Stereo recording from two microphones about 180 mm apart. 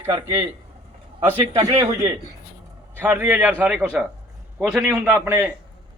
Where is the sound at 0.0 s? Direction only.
20° right (ahead or behind).